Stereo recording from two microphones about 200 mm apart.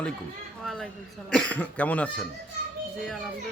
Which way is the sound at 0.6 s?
Centre (ahead or behind).